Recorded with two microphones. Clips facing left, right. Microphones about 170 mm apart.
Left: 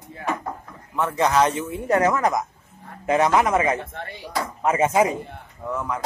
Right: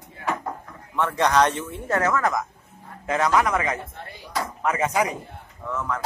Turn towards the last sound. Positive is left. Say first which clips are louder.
# left 1 dB
turn(degrees=15)  # may be behind; listen again after turning